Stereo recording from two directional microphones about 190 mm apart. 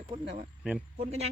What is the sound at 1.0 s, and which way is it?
Speech, 35° right (ahead or behind).